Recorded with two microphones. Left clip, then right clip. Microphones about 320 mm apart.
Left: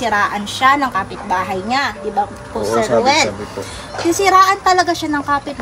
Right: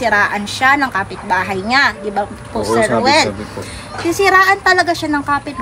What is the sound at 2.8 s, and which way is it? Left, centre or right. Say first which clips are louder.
Speech: right 1 dB; right.